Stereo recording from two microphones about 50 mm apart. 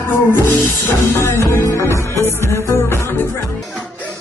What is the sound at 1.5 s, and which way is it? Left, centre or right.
Music, left.